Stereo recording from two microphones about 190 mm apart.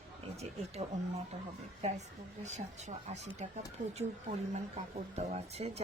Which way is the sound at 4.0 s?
35° right (ahead or behind).